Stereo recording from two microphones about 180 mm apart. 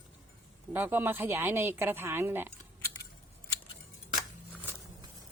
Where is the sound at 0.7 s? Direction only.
10° right (ahead or behind).